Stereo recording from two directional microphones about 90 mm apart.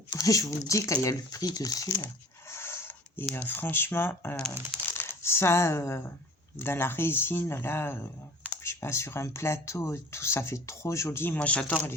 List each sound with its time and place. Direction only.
0.2 s speech: 40° left (ahead or behind)
2.5 s a sound: 25° left (ahead or behind)
3.3 s speech: 20° left (ahead or behind)
11.3 s speech: 15° left (ahead or behind)